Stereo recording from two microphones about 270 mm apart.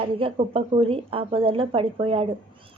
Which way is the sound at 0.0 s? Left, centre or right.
Right.